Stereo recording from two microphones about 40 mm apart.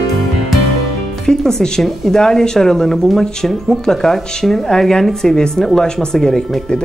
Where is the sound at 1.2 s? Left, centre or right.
Centre.